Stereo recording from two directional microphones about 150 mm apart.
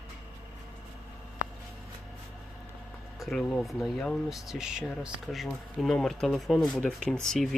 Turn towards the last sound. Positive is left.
turn(degrees=5)  # may be behind; listen again after turning